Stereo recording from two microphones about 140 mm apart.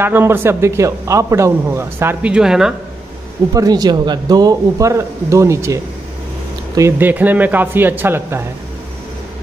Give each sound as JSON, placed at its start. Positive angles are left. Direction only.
{"t": 0.0, "sound": "a man's voice", "side_deg": -15}
{"t": 3.5, "sound": "a man's voice", "side_deg": -25}